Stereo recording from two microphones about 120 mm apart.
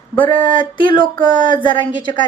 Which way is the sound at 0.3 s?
45° left (ahead or behind).